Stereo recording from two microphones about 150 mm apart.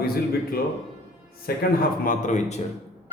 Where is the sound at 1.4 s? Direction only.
70° left (ahead or behind); by 2.6 s 50° left (ahead or behind).